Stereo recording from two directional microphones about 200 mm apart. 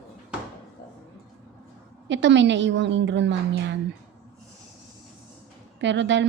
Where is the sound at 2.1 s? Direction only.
65° right (ahead or behind).